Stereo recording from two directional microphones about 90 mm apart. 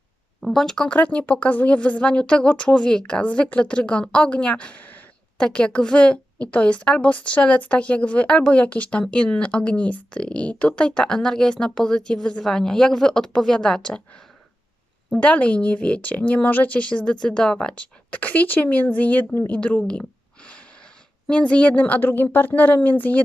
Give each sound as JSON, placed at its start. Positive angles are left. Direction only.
{"t": 0.4, "sound": "speech", "side_deg": 5}
{"t": 15.1, "sound": "speech", "side_deg": 15}
{"t": 19.5, "sound": "a sound", "side_deg": 10}
{"t": 21.2, "sound": "speech", "side_deg": 15}